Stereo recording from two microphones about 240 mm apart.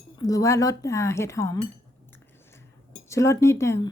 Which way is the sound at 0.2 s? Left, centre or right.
Centre.